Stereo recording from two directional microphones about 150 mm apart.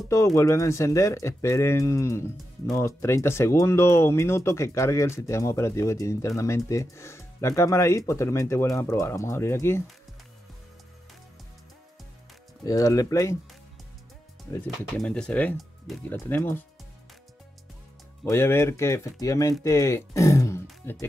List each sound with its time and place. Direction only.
0.1 s speech: 20° left (ahead or behind)
12.6 s speech: 25° left (ahead or behind)
14.6 s speech: 5° left (ahead or behind)
18.3 s speech: 15° left (ahead or behind)